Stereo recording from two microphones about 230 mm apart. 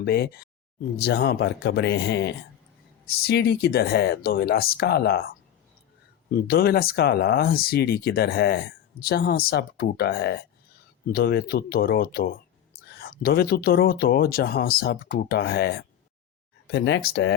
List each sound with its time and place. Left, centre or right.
0.0 s speech: left
6.3 s speech: left